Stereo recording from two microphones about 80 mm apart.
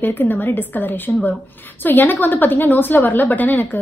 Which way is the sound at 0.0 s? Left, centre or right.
Left.